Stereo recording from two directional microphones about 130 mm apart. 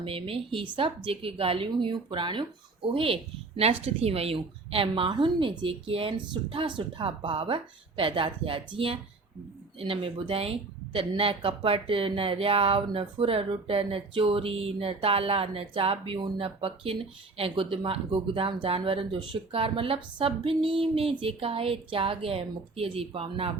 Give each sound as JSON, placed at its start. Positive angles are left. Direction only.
{"t": 0.0, "sound": "speech", "side_deg": -45}